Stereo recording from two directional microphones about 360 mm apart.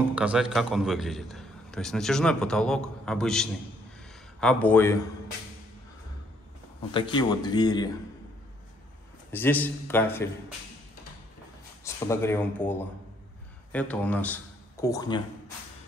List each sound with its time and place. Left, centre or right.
0.1 s a man's voice: centre
6.9 s a man's voice: centre
9.3 s a man's voice: centre
11.8 s a man's voice: centre